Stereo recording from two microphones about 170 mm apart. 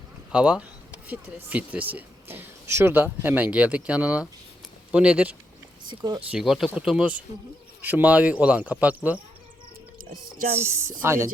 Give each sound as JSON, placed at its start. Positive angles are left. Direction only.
{"t": 0.3, "sound": "speech", "side_deg": -5}
{"t": 5.9, "sound": "speech", "side_deg": -20}
{"t": 6.3, "sound": "speech", "side_deg": 0}
{"t": 10.0, "sound": "speech", "side_deg": -55}
{"t": 10.6, "sound": "speech", "side_deg": -15}